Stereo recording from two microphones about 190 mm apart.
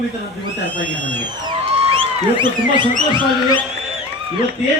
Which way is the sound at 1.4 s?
25° right (ahead or behind).